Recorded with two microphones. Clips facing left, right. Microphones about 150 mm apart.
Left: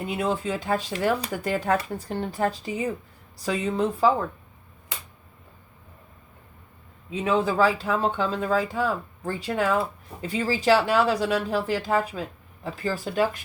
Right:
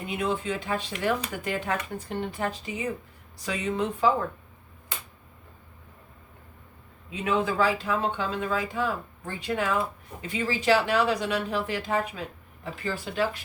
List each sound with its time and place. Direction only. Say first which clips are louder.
0.0 s speech: left 2 dB; 35° left (ahead or behind)
7.1 s speech: left 3 dB; 35° left (ahead or behind)